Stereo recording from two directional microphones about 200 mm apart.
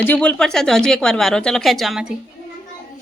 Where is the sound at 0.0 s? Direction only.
5° left (ahead or behind).